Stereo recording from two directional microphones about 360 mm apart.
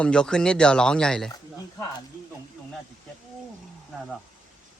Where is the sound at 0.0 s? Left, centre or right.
Centre.